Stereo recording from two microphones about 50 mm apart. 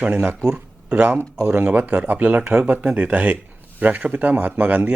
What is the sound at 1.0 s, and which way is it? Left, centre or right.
Speech, right.